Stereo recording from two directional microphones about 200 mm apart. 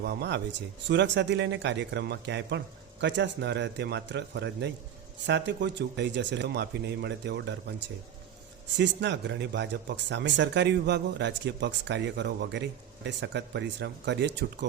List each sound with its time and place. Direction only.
0.0 s speech: 55° right (ahead or behind)
8.8 s speech: 60° right (ahead or behind)